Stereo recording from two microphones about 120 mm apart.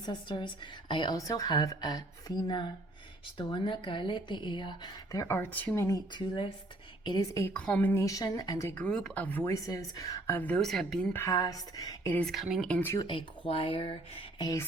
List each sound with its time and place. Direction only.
0.0 s a woman's voice: 40° left (ahead or behind)
1.1 s a woman's voice: 30° left (ahead or behind)
5.1 s a woman's voice: 25° left (ahead or behind)
5.4 s speech: 15° left (ahead or behind)
6.1 s speech: 45° left (ahead or behind)
7.4 s speech: 10° left (ahead or behind)
8.0 s a woman's voice: 30° left (ahead or behind)
8.7 s a woman's voice: 10° left (ahead or behind); by 10.3 s 30° left (ahead or behind)
10.3 s a woman's voice: 10° left (ahead or behind)
11.1 s a woman's voice: 25° left (ahead or behind)
12.1 s a woman's voice: 5° left (ahead or behind)
13.0 s speech: 40° left (ahead or behind)